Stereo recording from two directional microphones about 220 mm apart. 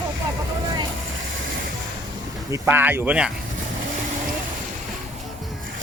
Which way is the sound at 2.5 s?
10° right (ahead or behind).